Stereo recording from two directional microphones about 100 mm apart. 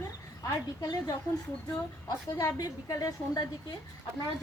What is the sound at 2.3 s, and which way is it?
A woman's voice, 35° left (ahead or behind).